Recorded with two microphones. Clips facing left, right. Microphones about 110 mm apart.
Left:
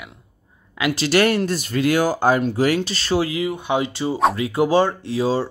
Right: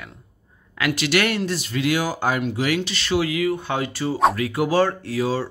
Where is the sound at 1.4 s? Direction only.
45° left (ahead or behind).